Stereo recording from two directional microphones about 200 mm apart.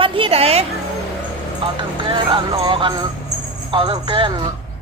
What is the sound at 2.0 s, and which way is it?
Speech, 25° right (ahead or behind).